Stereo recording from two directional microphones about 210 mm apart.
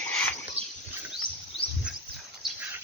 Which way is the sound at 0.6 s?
30° right (ahead or behind).